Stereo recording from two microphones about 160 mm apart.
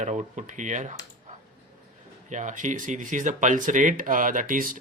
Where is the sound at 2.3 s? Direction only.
50° right (ahead or behind).